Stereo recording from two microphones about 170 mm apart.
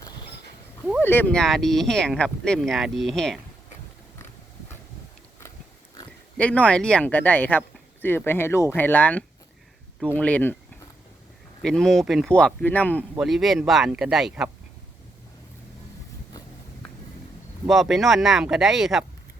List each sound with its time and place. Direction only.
0.0 s a sound: 25° left (ahead or behind)
1.0 s speech: 10° left (ahead or behind)
6.3 s speech: 5° left (ahead or behind)
11.6 s speech: 5° left (ahead or behind)
17.7 s speech: centre (ahead or behind)